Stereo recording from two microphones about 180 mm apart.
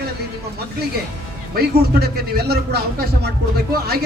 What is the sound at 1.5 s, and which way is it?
Speech, 60° right (ahead or behind).